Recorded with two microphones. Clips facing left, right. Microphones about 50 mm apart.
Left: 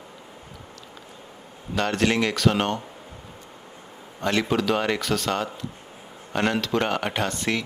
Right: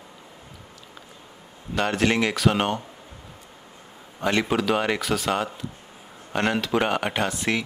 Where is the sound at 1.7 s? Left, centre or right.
Centre.